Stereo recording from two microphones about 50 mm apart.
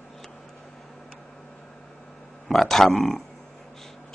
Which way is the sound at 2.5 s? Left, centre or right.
Centre.